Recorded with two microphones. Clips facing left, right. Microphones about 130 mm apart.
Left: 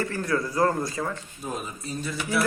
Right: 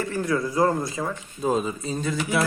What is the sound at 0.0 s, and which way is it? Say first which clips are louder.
A man's voice: right 2 dB; 15° right (ahead or behind).